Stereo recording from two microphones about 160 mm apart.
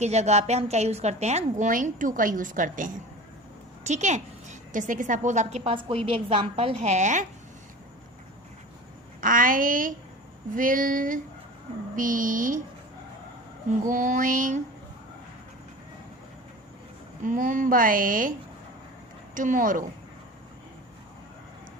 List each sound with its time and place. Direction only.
0.0 s a woman's voice: 45° right (ahead or behind)
9.2 s speech: 60° right (ahead or behind)
13.9 s speech: 55° right (ahead or behind)
17.2 s speech: 55° right (ahead or behind)